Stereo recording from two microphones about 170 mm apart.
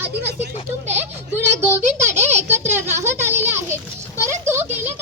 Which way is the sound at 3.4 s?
15° right (ahead or behind).